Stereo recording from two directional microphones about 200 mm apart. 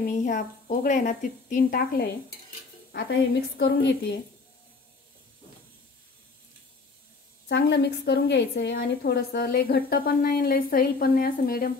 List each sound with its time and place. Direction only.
0.2 s a woman's voice: 40° left (ahead or behind)
3.5 s a woman's voice: 50° left (ahead or behind)
7.4 s a woman's voice: 60° left (ahead or behind)